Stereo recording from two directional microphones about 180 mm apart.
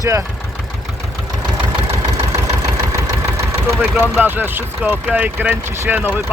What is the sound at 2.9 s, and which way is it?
Engine, 10° right (ahead or behind).